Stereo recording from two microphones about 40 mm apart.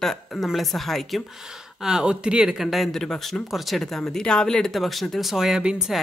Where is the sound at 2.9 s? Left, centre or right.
Centre.